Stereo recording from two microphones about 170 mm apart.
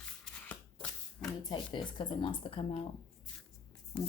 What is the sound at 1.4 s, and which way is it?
Speech, 25° left (ahead or behind).